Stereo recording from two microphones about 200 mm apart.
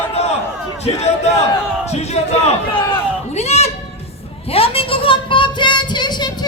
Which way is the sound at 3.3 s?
30° left (ahead or behind).